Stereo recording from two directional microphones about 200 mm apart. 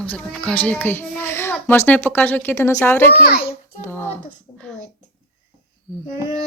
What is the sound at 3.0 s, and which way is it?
Speech, 50° left (ahead or behind).